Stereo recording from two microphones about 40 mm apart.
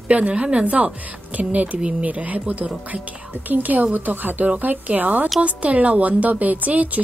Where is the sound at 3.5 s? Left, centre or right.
Right.